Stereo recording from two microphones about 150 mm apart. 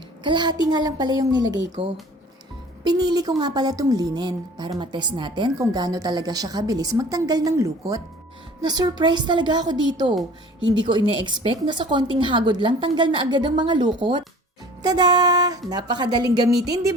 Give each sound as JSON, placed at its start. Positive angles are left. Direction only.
{"t": 0.3, "sound": "a woman's voice", "side_deg": -30}
{"t": 1.8, "sound": "a woman's voice", "side_deg": -40}
{"t": 2.8, "sound": "a woman's voice", "side_deg": -25}